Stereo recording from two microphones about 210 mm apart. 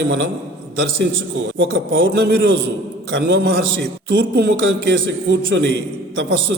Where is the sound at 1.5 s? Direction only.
65° right (ahead or behind).